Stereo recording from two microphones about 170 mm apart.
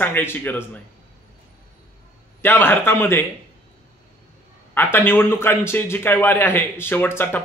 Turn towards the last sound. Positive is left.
turn(degrees=10)  # may be behind; listen again after turning